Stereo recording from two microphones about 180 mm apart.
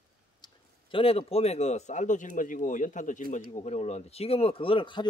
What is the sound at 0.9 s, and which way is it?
Speech, 30° left (ahead or behind).